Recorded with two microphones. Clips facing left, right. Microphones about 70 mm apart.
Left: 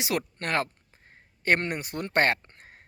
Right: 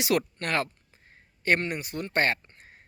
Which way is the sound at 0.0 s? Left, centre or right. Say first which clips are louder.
Right 4 dB; centre.